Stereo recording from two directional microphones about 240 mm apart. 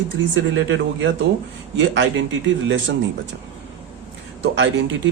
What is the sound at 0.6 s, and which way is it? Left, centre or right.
Speech, right.